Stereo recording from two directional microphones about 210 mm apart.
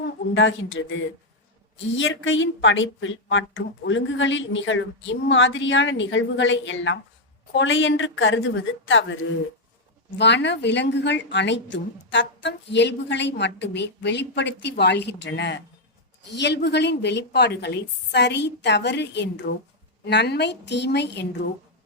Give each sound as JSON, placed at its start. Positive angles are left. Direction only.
{"t": 0.3, "sound": "a woman's voice", "side_deg": 65}
{"t": 2.0, "sound": "a woman's voice", "side_deg": 65}
{"t": 10.2, "sound": "a woman's voice", "side_deg": 55}